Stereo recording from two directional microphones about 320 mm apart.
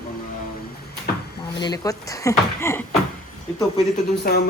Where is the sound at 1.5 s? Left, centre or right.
Centre.